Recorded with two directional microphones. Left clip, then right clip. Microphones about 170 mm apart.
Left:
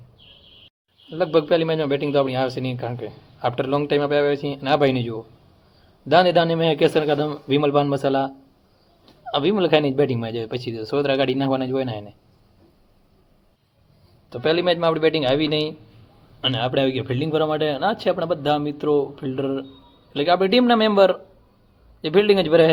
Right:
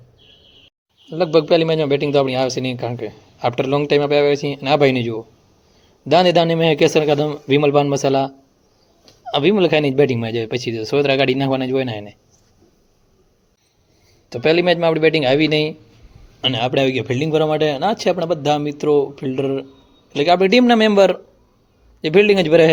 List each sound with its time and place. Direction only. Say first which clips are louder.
1.1 s speech: right 4 dB; 30° right (ahead or behind)
14.3 s speech: right 5 dB; 30° right (ahead or behind)